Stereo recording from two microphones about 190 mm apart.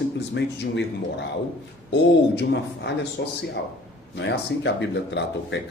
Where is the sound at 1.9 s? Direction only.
60° left (ahead or behind).